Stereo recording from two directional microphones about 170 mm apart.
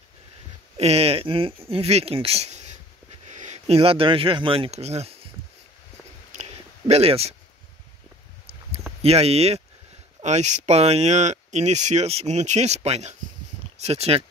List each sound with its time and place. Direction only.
0.7 s speech: 40° right (ahead or behind)
6.9 s speech: 35° right (ahead or behind)
9.0 s speech: 35° right (ahead or behind)